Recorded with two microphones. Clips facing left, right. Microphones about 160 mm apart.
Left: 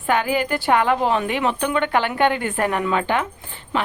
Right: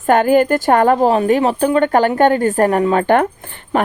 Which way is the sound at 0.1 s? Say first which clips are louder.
Right 9 dB; 50° right (ahead or behind).